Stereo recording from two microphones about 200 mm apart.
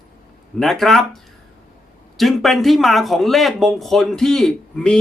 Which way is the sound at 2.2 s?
Centre (ahead or behind).